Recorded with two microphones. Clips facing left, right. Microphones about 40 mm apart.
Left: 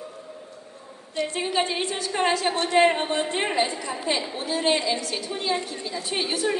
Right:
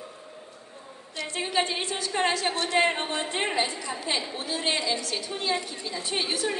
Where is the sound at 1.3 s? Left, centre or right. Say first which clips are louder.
Even; centre.